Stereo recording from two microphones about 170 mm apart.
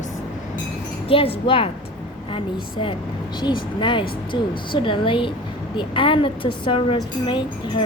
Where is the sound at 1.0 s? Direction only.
35° left (ahead or behind).